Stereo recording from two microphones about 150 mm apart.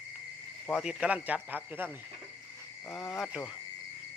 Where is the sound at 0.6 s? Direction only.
5° right (ahead or behind).